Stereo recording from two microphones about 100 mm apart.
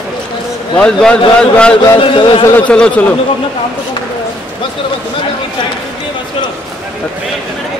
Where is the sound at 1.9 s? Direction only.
55° left (ahead or behind).